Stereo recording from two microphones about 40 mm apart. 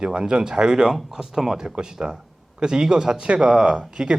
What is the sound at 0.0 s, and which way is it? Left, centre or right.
Speech, right.